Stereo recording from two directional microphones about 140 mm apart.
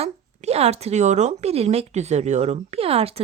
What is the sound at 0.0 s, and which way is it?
Speech, 50° right (ahead or behind).